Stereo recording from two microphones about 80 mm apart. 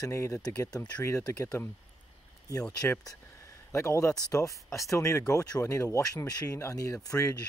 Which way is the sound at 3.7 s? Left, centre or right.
Left.